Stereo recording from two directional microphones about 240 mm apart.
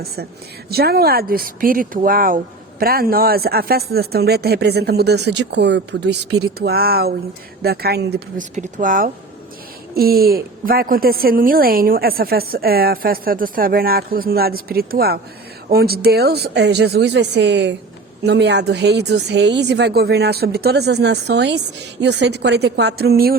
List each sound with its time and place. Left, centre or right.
0.7 s a woman's voice: right
8.5 s a woman's voice: right